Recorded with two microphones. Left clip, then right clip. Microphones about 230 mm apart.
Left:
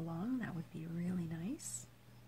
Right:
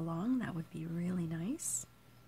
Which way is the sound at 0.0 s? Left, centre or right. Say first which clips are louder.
Right 5 dB; right.